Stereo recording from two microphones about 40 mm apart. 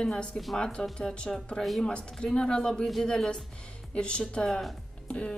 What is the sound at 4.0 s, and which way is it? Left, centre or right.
Speech, left.